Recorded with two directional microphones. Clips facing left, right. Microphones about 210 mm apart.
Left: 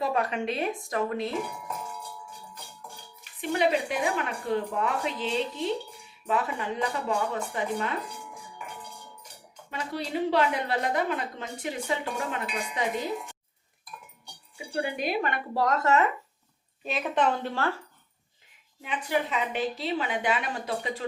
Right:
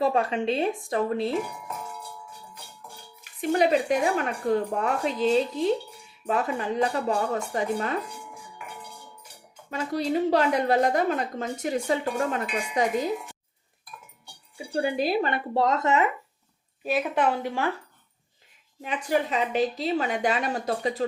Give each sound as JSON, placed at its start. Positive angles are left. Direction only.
{"t": 0.0, "sound": "a woman's voice", "side_deg": -30}
{"t": 1.5, "sound": "music", "side_deg": -5}
{"t": 3.5, "sound": "a woman's voice", "side_deg": -40}
{"t": 9.6, "sound": "a woman's voice", "side_deg": -45}
{"t": 14.7, "sound": "a woman's voice", "side_deg": -35}
{"t": 16.8, "sound": "a woman's voice", "side_deg": -10}
{"t": 18.8, "sound": "a woman's voice", "side_deg": -40}